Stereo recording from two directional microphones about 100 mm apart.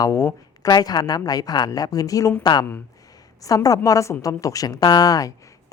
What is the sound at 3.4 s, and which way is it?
A woman's voice, 35° left (ahead or behind).